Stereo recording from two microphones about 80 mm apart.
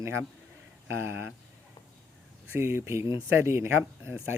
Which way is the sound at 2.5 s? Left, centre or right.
Right.